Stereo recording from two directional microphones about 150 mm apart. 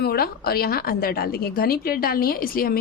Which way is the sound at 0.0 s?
90° left.